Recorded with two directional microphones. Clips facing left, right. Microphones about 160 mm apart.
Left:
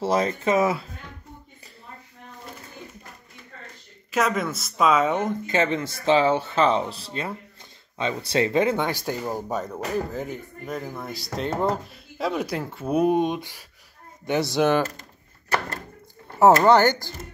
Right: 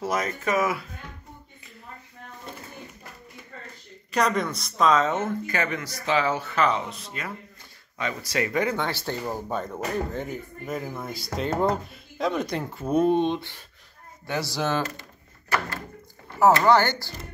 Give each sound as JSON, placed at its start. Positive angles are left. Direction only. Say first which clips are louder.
{"t": 0.0, "sound": "speech", "louder": "left 5 dB", "side_deg": 30}
{"t": 4.1, "sound": "speech", "louder": "even", "side_deg": 5}
{"t": 16.6, "sound": "speech", "louder": "left 3 dB", "side_deg": 15}